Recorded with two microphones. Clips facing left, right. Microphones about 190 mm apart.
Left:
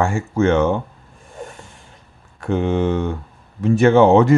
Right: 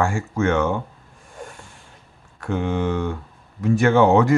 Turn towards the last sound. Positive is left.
turn(degrees=25)  # may be behind; listen again after turning